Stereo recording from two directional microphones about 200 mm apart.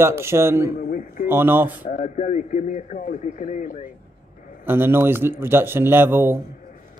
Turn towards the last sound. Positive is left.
turn(degrees=-10)  # may be behind; listen again after turning